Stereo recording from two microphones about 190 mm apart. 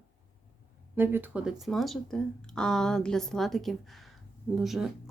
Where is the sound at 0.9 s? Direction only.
10° right (ahead or behind).